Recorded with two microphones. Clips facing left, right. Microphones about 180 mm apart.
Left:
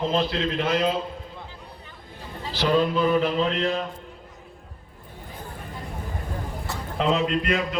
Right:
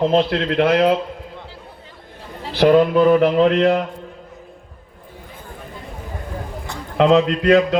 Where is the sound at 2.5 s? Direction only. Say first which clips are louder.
Right 9 dB; 60° right (ahead or behind).